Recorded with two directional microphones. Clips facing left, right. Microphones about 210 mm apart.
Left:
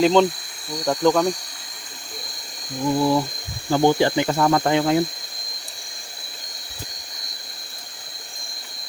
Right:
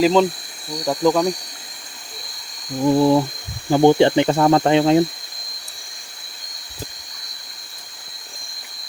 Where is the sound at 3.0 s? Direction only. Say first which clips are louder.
Right 4 dB; 20° right (ahead or behind).